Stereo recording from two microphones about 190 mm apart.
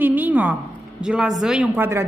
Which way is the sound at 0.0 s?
10° right (ahead or behind).